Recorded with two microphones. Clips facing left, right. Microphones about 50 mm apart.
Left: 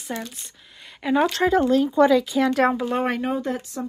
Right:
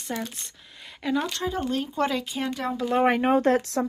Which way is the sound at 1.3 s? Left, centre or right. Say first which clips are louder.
Left 9 dB; left.